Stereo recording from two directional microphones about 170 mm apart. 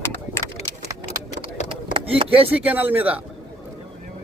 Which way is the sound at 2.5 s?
10° right (ahead or behind).